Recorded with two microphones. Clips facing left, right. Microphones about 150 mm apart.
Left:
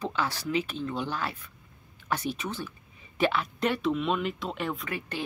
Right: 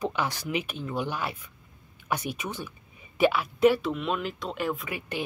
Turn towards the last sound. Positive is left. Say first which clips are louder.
# right 2 dB
turn(degrees=-10)  # may be behind; listen again after turning